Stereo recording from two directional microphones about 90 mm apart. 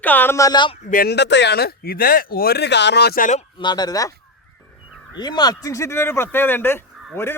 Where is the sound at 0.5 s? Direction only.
60° left (ahead or behind).